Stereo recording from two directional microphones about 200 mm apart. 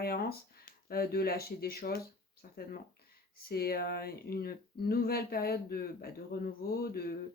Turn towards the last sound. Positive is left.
turn(degrees=50)  # may be behind; listen again after turning